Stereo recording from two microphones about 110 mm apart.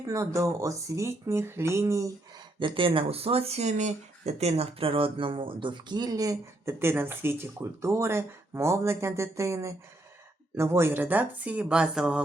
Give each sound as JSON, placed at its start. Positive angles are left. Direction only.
{"t": 0.0, "sound": "speech", "side_deg": -30}
{"t": 2.6, "sound": "speech", "side_deg": -50}
{"t": 6.7, "sound": "speech", "side_deg": -20}